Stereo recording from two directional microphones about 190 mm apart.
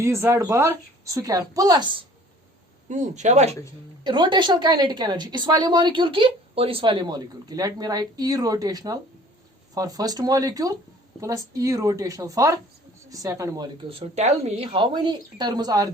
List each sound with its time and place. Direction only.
0.0 s speech: 15° right (ahead or behind)
2.9 s speech: 40° right (ahead or behind)
4.0 s a woman's voice: 25° right (ahead or behind)
13.8 s a woman's voice: 35° right (ahead or behind)